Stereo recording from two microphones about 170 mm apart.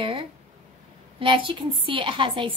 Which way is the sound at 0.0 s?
30° right (ahead or behind).